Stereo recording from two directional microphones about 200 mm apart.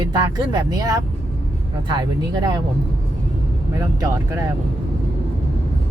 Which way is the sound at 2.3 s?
20° right (ahead or behind).